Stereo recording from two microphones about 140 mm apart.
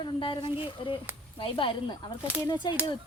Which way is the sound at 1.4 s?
40° left (ahead or behind).